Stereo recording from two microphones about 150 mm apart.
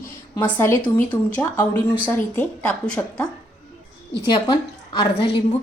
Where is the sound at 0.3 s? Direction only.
10° left (ahead or behind).